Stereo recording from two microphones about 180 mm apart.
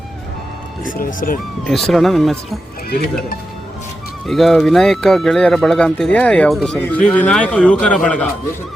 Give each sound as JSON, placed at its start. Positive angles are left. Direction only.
{"t": 0.9, "sound": "speech", "side_deg": 50}
{"t": 1.6, "sound": "speech", "side_deg": 0}
{"t": 4.3, "sound": "speech", "side_deg": 0}